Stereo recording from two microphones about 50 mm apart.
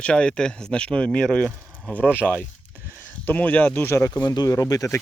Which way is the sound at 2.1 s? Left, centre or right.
Left.